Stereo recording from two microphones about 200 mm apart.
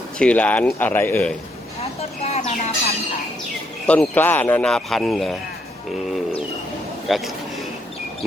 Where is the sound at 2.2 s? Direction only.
30° left (ahead or behind).